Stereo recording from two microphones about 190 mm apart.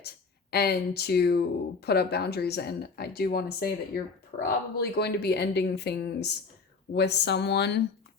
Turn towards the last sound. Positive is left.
turn(degrees=60)  # may be behind; listen again after turning